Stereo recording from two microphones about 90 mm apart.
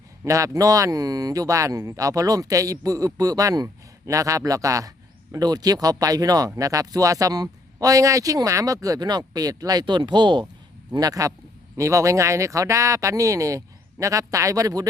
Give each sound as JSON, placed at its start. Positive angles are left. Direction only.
{"t": 0.3, "sound": "speech", "side_deg": -40}
{"t": 9.8, "sound": "speech", "side_deg": -60}
{"t": 10.9, "sound": "speech", "side_deg": -45}